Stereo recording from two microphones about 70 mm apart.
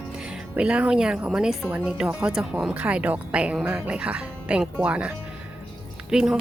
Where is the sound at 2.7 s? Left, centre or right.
Right.